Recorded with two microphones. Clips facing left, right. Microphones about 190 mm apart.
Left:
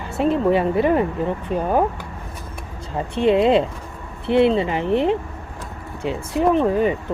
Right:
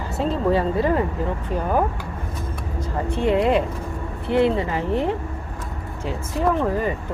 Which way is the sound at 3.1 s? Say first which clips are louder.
Left 4 dB; 20° left (ahead or behind).